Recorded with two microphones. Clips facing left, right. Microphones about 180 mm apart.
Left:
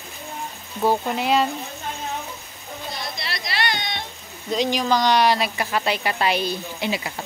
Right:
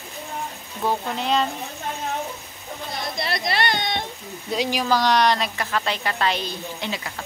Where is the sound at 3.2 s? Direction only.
50° right (ahead or behind).